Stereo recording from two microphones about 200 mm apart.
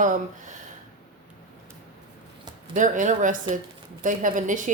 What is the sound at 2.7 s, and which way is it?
A woman's voice, 40° right (ahead or behind).